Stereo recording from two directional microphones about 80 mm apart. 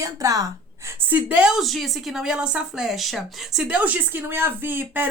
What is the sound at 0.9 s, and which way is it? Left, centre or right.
Speech, right.